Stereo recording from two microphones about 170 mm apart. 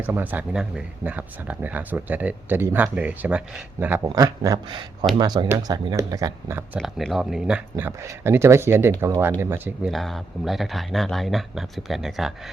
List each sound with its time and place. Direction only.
0.0 s speech: 10° right (ahead or behind)
6.7 s speech: centre (ahead or behind)
9.9 s speech: centre (ahead or behind)